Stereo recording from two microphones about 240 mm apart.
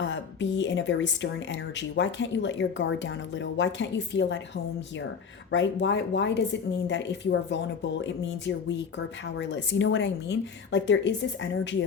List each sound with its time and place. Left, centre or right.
0.0 s speech: left
5.5 s speech: left